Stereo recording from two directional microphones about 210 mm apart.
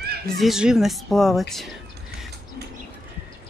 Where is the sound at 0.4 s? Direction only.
Centre (ahead or behind).